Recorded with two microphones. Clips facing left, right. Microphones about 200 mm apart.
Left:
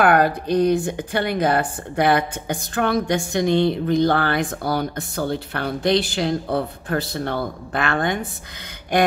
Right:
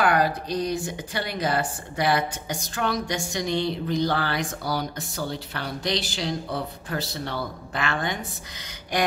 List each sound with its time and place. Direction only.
0.0 s a woman's voice: 55° left (ahead or behind)